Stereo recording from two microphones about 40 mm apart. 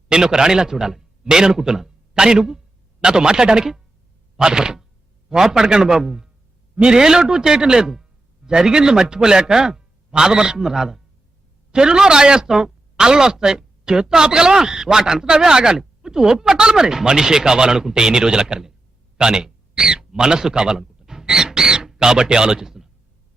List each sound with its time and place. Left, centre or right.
0.1 s a man's voice: centre
4.4 s a sound: centre
5.3 s speech: centre
6.7 s a man's voice: centre